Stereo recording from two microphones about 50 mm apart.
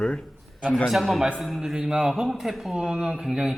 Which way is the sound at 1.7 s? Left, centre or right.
Centre.